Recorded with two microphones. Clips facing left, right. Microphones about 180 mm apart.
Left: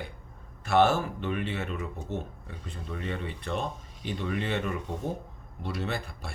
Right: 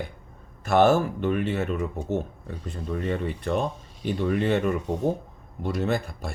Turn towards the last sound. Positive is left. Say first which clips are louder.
# right 7 dB
turn(degrees=-45)  # may be behind; listen again after turning